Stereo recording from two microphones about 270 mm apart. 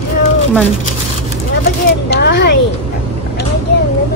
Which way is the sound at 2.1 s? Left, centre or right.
Left.